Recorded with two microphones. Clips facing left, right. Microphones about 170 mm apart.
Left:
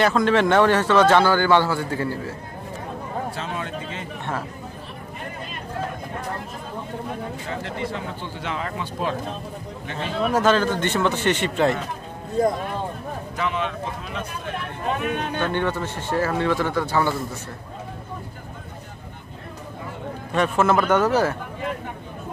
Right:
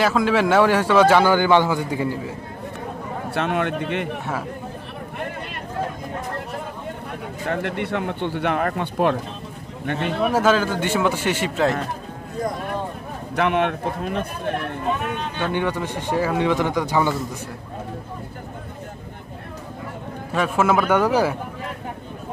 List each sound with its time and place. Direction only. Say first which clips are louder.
0.0 s speech: even; 5° right (ahead or behind)
3.3 s speech: right 7 dB; 65° right (ahead or behind)
7.4 s speech: right 7 dB; 60° right (ahead or behind)
10.2 s speech: even; 5° right (ahead or behind)
13.4 s speech: right 7 dB; 60° right (ahead or behind)
15.0 s speech: left 1 dB; 60° left (ahead or behind)
15.3 s speech: right 3 dB; 10° right (ahead or behind)
20.3 s speech: even; 5° right (ahead or behind)